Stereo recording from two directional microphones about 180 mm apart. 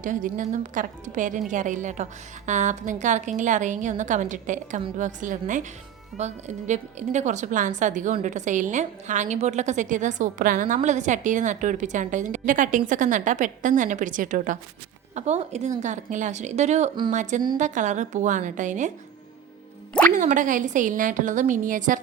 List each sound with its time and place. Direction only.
0.0 s a woman's voice: 45° right (ahead or behind)
19.9 s music: 5° left (ahead or behind)
20.1 s a woman's voice: 45° right (ahead or behind)